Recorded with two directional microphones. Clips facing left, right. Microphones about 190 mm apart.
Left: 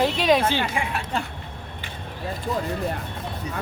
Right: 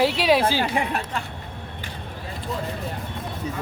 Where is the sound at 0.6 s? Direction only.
40° right (ahead or behind).